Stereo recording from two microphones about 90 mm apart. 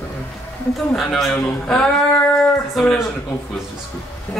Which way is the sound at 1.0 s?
Centre (ahead or behind).